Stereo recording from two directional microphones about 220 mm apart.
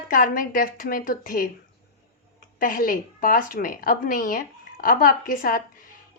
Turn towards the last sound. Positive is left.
turn(degrees=40)  # may be behind; listen again after turning